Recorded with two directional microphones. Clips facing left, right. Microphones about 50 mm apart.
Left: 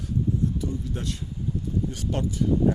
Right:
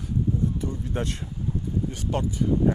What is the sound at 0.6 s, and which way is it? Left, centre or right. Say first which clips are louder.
Speech: right 1 dB; right.